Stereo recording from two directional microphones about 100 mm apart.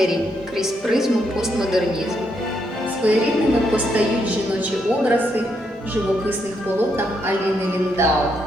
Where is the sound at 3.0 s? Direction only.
15° right (ahead or behind).